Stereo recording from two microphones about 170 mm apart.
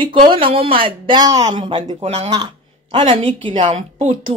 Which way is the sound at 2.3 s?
25° right (ahead or behind).